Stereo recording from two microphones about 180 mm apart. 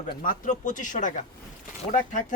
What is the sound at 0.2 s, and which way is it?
Speech, 50° left (ahead or behind).